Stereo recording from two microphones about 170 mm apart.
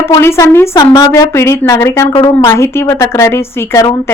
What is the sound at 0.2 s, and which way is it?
A woman's voice, 15° left (ahead or behind).